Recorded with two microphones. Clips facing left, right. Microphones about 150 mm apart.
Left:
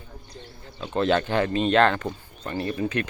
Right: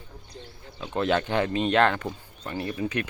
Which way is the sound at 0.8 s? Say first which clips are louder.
Left 2 dB; 15° right (ahead or behind).